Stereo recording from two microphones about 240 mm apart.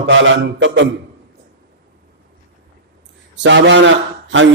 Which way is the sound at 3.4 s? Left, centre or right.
Right.